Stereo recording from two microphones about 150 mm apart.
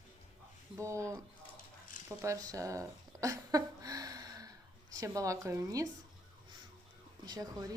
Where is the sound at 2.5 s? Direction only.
20° right (ahead or behind).